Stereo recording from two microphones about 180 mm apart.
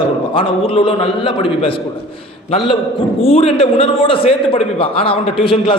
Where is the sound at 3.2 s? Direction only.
35° left (ahead or behind).